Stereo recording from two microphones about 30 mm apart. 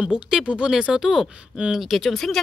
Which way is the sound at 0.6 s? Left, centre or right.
Right.